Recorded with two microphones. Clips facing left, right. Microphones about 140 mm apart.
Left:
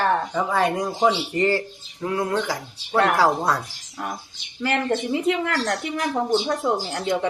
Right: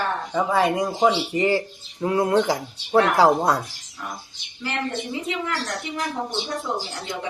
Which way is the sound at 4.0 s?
60° left (ahead or behind).